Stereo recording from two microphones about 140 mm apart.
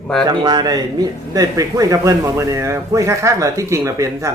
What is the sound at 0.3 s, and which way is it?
Speech, 30° right (ahead or behind).